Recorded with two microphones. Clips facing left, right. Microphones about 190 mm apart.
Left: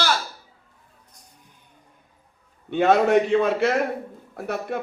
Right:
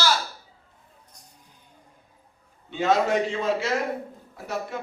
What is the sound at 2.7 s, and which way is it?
A man's voice, 60° left (ahead or behind).